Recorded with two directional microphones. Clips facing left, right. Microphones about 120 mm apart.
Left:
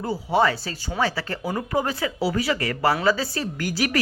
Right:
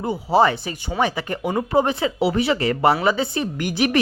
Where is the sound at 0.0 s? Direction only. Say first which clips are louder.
Right 4 dB; 25° right (ahead or behind).